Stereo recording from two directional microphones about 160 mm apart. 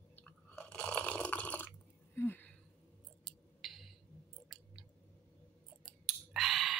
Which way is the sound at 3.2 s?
Centre (ahead or behind).